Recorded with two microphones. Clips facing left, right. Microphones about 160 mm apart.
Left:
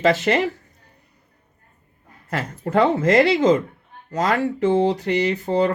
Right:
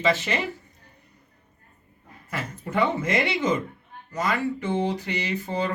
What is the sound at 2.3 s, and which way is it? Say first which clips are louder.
Speech: left 7 dB; 90° left.